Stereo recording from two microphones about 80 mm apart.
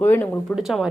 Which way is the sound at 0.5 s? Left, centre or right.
Centre.